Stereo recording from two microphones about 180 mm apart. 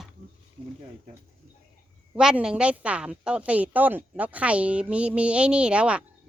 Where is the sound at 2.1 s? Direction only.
5° right (ahead or behind).